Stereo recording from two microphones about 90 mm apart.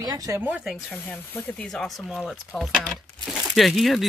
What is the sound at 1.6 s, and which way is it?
Speech, 5° left (ahead or behind).